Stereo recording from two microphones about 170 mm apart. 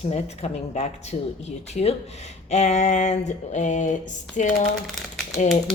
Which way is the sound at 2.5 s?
40° left (ahead or behind).